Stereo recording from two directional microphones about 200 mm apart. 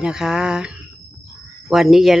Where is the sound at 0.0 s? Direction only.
5° right (ahead or behind).